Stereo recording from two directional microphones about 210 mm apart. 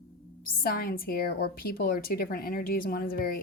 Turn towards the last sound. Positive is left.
turn(degrees=45)  # may be behind; listen again after turning